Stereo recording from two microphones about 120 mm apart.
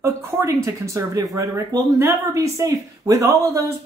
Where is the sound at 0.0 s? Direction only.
25° right (ahead or behind).